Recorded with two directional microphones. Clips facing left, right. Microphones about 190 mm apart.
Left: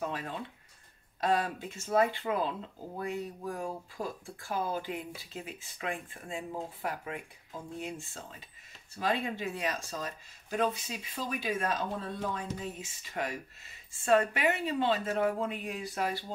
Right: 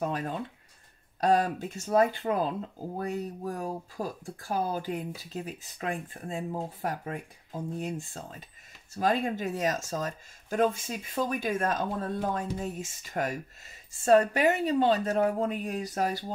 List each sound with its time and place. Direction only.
0.0 s speech: 40° right (ahead or behind)